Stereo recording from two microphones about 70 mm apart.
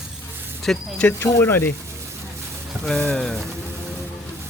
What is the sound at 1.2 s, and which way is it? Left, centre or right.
Speech, left.